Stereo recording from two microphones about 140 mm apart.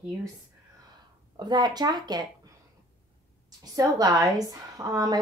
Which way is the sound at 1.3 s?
30° right (ahead or behind).